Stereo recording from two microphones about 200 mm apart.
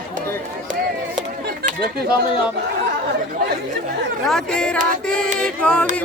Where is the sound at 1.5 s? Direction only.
50° right (ahead or behind).